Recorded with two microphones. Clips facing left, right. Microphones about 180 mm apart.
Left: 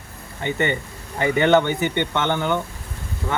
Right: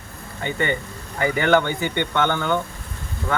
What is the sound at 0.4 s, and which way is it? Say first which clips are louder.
Speech: left 1 dB; 20° left (ahead or behind).